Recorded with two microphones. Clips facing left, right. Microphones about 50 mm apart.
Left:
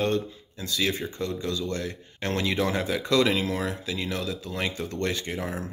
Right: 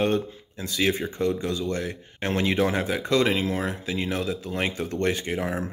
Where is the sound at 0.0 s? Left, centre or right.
Right.